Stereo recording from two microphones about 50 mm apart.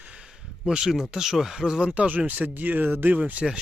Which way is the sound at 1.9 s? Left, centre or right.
Right.